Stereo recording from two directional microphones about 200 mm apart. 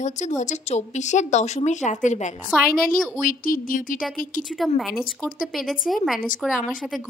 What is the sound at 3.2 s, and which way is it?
Speech, 45° left (ahead or behind).